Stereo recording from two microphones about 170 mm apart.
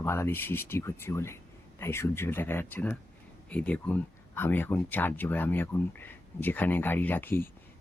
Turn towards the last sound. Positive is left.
turn(degrees=15)  # may be behind; listen again after turning